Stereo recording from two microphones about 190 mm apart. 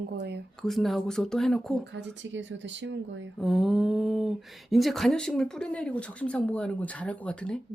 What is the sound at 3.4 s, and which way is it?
Speech, centre (ahead or behind).